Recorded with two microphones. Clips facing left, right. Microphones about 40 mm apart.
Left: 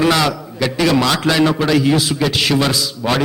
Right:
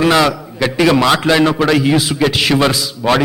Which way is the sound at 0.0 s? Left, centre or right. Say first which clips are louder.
Right 3 dB; centre.